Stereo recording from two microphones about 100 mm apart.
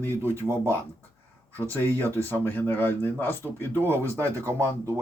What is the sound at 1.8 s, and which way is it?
Speech, 20° left (ahead or behind).